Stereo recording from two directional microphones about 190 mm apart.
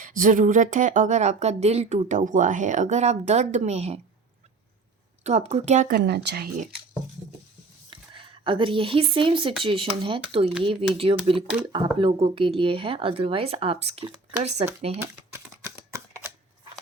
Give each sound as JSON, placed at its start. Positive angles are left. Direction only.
{"t": 0.0, "sound": "speech", "side_deg": -45}
{"t": 5.2, "sound": "speech", "side_deg": -35}
{"t": 6.0, "sound": "speech", "side_deg": -60}
{"t": 7.9, "sound": "speech", "side_deg": -25}